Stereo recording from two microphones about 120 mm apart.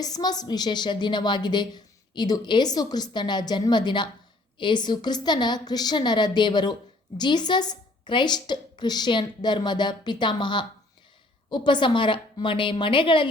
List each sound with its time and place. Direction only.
0.0 s a woman's voice: 35° left (ahead or behind)